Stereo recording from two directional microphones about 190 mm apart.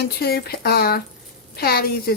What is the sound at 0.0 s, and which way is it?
A woman's voice, 55° left (ahead or behind).